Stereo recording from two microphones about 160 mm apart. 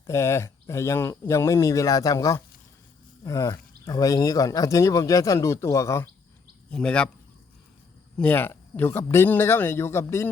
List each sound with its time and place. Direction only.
0.1 s speech: 15° left (ahead or behind)
6.7 s speech: 5° left (ahead or behind)
8.2 s speech: 10° left (ahead or behind)